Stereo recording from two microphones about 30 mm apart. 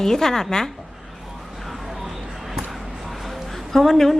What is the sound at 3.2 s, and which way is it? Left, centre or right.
Music, centre.